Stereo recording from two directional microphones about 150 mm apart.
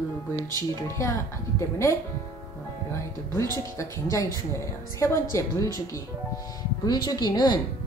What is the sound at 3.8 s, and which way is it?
A woman's voice, 20° left (ahead or behind).